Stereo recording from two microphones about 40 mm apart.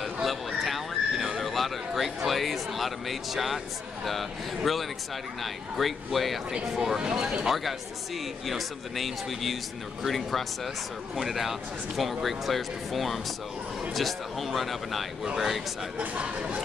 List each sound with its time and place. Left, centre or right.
0.0 s neigh: centre
1.4 s a man's voice: centre
6.5 s speech: centre
7.4 s speech: centre
16.2 s speech: right